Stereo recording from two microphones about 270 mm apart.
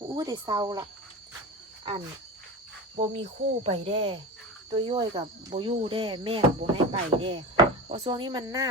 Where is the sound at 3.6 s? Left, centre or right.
Right.